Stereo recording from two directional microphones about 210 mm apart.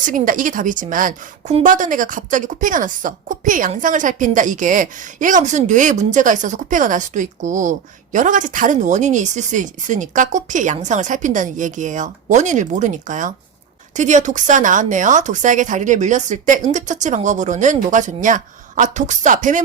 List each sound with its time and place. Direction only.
0.0 s a woman's voice: 40° right (ahead or behind)